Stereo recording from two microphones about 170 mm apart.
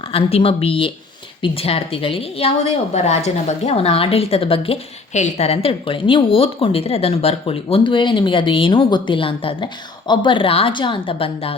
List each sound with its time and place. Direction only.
0.1 s a woman's voice: 35° left (ahead or behind)